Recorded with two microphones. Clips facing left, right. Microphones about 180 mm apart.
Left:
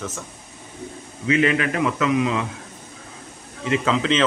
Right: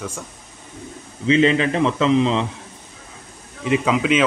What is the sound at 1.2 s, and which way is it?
A man's voice, 25° right (ahead or behind).